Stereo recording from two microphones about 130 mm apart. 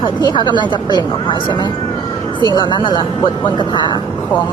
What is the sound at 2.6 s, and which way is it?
Speech, 35° left (ahead or behind).